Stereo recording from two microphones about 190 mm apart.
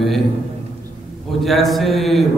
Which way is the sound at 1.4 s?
Centre (ahead or behind).